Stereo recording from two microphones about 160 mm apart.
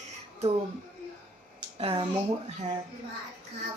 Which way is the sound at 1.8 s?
35° right (ahead or behind).